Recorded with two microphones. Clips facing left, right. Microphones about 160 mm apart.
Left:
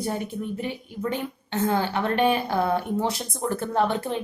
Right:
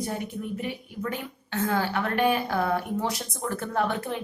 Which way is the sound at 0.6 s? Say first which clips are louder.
Left 2 dB; 30° left (ahead or behind).